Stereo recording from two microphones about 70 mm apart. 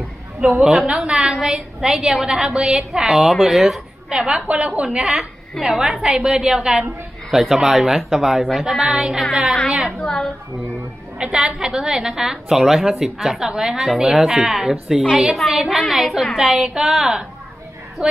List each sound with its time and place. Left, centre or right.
0.6 s a woman's voice: centre
4.4 s a woman's voice: right
4.9 s a woman's voice: centre
9.9 s a woman's voice: centre
11.4 s a woman's voice: centre